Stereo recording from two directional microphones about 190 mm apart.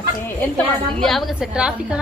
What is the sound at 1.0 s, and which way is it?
Speech, centre (ahead or behind).